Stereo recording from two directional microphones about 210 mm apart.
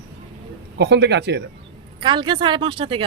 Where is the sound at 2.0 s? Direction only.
20° right (ahead or behind).